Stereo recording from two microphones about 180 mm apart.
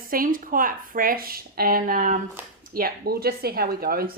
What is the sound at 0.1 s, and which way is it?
A woman's voice, 50° right (ahead or behind).